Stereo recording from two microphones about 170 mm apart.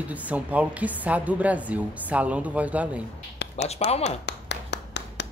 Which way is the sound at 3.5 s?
40° left (ahead or behind).